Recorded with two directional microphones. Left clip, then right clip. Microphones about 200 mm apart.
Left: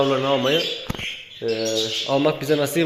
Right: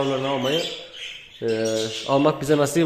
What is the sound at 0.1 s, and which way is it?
Speech, 5° left (ahead or behind).